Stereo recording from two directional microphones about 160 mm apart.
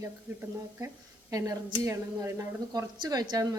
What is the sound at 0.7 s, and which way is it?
A woman's voice, 20° right (ahead or behind).